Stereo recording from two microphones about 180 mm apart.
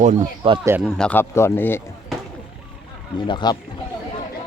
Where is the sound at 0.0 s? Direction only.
40° right (ahead or behind).